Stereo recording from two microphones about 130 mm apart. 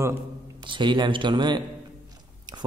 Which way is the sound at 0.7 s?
35° right (ahead or behind).